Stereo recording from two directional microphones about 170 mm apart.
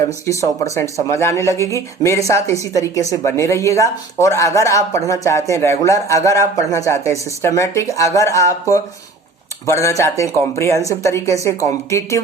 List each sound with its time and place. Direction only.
0.1 s speech: 20° left (ahead or behind)